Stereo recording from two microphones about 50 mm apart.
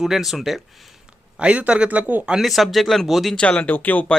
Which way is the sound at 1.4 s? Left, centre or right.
Right.